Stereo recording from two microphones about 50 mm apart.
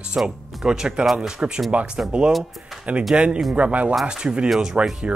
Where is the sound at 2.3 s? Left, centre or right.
Centre.